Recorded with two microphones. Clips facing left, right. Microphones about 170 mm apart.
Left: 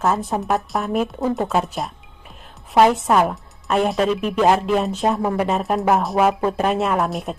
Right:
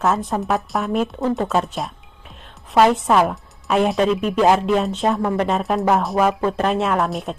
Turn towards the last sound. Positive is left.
turn(degrees=0)  # may be behind; listen again after turning